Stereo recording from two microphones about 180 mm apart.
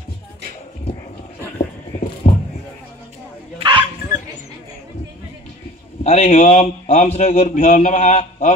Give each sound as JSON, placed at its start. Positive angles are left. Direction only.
{"t": 2.2, "sound": "music", "side_deg": 40}
{"t": 3.5, "sound": "dog", "side_deg": -25}
{"t": 6.0, "sound": "a man's voice", "side_deg": 35}